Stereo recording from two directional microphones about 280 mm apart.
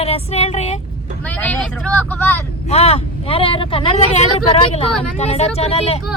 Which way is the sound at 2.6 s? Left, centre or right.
Left.